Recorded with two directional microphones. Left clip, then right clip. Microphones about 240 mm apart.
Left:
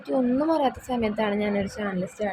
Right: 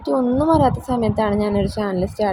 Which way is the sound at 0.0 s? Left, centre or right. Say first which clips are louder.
Right 6 dB; centre.